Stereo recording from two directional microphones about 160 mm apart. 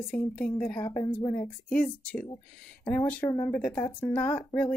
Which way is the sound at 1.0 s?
20° left (ahead or behind).